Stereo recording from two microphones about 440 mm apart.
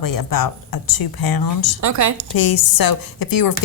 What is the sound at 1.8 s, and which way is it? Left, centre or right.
Speech, right.